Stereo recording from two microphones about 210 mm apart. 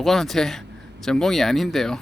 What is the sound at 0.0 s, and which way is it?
Speech, centre (ahead or behind).